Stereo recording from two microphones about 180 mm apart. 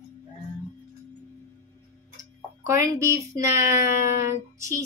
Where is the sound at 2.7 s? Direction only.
15° right (ahead or behind).